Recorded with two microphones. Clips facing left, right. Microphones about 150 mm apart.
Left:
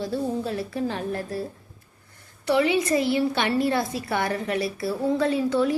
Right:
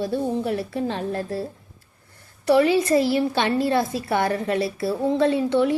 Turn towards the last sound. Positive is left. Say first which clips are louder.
# right 3 dB
turn(degrees=-25)  # may be behind; listen again after turning